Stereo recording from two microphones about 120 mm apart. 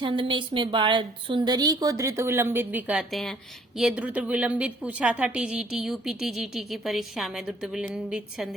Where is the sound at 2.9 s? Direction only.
Centre (ahead or behind).